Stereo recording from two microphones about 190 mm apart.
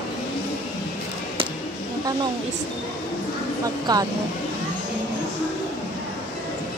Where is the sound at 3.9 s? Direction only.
20° right (ahead or behind).